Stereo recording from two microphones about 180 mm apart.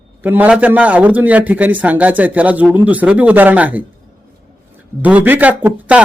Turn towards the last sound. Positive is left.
turn(degrees=-10)  # may be behind; listen again after turning